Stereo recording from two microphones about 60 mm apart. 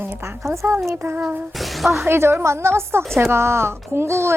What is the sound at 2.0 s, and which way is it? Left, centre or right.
Speech, right.